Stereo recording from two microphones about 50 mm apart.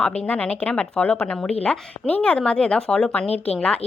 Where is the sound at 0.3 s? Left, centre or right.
Left.